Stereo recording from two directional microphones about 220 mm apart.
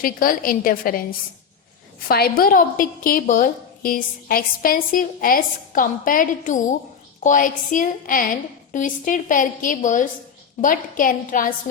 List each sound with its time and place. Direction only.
0.0 s a woman's voice: 40° left (ahead or behind)
2.0 s a woman's voice: 45° left (ahead or behind)